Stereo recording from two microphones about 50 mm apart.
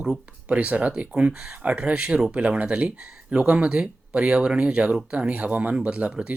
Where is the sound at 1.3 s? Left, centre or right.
Centre.